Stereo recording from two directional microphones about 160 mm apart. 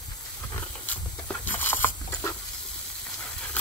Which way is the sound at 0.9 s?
10° left (ahead or behind).